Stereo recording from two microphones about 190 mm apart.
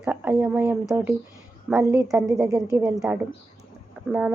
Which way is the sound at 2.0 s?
15° right (ahead or behind).